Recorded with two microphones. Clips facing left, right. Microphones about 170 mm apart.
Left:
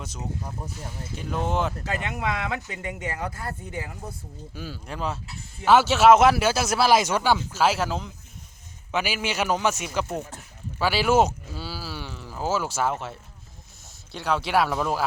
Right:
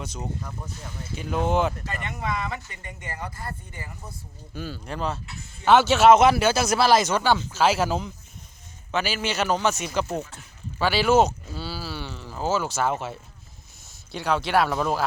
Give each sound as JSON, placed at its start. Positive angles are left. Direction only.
{"t": 0.0, "sound": "speech", "side_deg": 5}
{"t": 1.8, "sound": "speech", "side_deg": 75}
{"t": 2.6, "sound": "speech", "side_deg": 90}
{"t": 4.5, "sound": "speech", "side_deg": 5}
{"t": 8.9, "sound": "a man's voice", "side_deg": 10}
{"t": 10.8, "sound": "a sound", "side_deg": 5}
{"t": 12.9, "sound": "speech", "side_deg": -5}